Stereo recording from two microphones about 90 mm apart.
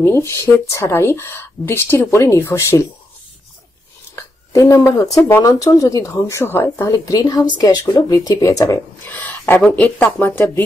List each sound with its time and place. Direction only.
0.0 s speech: 25° left (ahead or behind)
4.1 s speech: 35° left (ahead or behind)
6.9 s speech: 40° left (ahead or behind)
8.1 s speech: 40° left (ahead or behind)
9.0 s speech: 20° left (ahead or behind)